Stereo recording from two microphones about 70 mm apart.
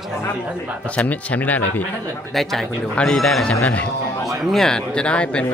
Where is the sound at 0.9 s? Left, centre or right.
Left.